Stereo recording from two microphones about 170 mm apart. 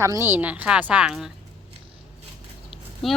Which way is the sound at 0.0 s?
15° right (ahead or behind).